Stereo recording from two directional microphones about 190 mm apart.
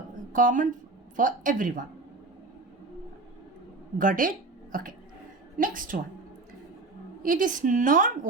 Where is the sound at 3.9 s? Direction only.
45° right (ahead or behind).